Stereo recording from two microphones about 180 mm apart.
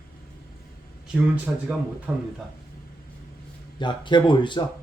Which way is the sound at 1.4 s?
5° right (ahead or behind).